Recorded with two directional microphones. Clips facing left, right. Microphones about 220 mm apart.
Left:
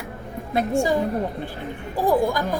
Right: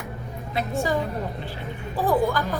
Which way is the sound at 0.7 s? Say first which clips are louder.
Left 4 dB; 15° left (ahead or behind).